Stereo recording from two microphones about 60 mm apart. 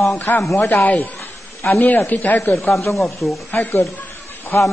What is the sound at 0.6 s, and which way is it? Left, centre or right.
Speech, left.